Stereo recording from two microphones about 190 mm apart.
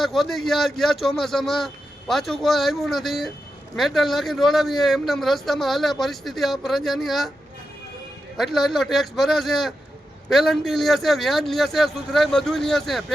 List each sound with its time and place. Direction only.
0.0 s a man's voice: centre (ahead or behind)
8.4 s a man's voice: centre (ahead or behind)